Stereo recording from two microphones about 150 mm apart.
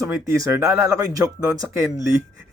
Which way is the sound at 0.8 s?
25° right (ahead or behind).